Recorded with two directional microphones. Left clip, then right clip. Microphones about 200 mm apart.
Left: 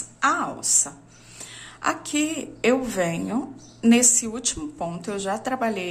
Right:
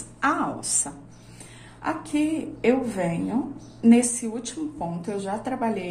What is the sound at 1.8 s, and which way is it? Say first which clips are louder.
A woman's voice: left 1 dB; 25° left (ahead or behind).